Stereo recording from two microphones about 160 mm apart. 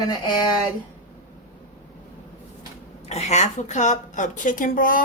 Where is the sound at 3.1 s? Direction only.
45° left (ahead or behind).